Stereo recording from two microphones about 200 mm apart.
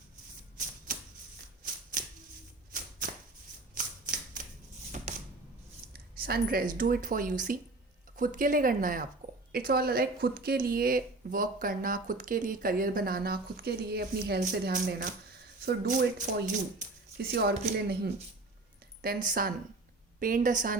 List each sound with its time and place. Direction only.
1.6 s shuffling cards: 40° right (ahead or behind)
3.8 s shuffling cards: 40° right (ahead or behind)
4.9 s a sound: 40° right (ahead or behind)
5.9 s a sound: 50° right (ahead or behind)
6.7 s speech: 45° right (ahead or behind)
14.7 s speech: 40° right (ahead or behind)
15.6 s speech: 50° right (ahead or behind)
17.2 s speech: 55° right (ahead or behind)